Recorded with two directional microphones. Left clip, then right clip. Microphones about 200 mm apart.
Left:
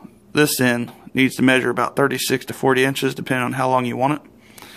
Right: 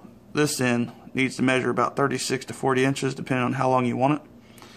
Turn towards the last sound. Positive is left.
turn(degrees=35)  # may be behind; listen again after turning